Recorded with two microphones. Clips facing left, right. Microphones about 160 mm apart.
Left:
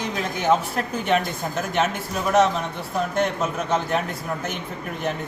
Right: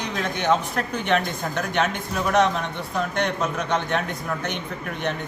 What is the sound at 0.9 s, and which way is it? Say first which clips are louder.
Speech: left 1 dB; 5° left (ahead or behind).